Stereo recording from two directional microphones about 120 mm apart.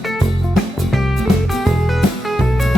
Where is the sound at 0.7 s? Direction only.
Centre (ahead or behind).